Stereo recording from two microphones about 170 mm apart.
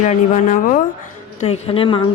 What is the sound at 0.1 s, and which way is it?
Speech, 45° left (ahead or behind).